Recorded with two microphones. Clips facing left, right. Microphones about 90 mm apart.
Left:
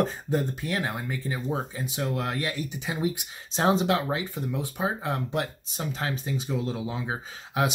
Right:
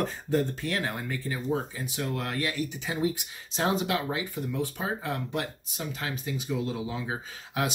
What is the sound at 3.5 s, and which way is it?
Speech, 30° left (ahead or behind).